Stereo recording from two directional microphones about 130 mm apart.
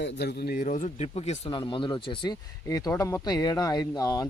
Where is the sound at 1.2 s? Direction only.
55° left (ahead or behind).